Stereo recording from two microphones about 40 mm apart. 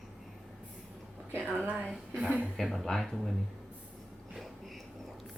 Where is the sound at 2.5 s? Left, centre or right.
Centre.